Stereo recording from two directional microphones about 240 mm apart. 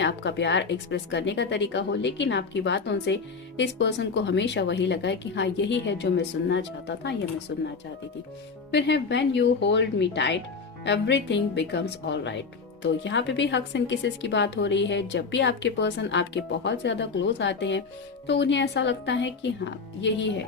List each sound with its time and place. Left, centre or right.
0.0 s speech: left
8.7 s speech: left